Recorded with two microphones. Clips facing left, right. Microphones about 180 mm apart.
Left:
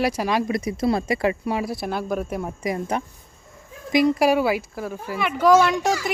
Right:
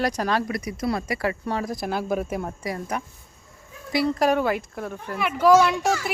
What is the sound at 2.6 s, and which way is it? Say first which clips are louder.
A child's voice: left 4 dB; 20° left (ahead or behind).